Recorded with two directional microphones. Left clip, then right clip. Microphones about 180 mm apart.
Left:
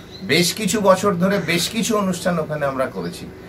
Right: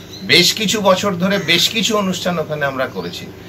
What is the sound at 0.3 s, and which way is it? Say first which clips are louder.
A man's voice: right 6 dB; 10° left (ahead or behind).